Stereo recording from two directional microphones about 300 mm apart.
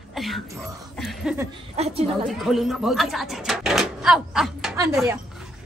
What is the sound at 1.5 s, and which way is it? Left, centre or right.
Speech, centre.